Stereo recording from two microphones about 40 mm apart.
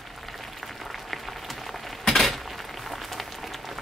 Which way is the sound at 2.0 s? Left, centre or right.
Centre.